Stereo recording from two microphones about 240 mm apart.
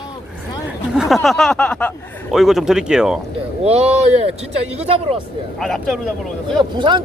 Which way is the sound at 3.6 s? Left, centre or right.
Right.